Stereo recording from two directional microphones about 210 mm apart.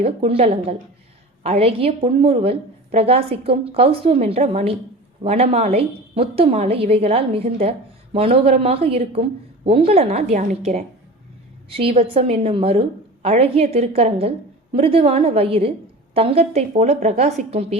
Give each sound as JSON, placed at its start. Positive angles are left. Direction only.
{"t": 0.0, "sound": "a woman's voice", "side_deg": -30}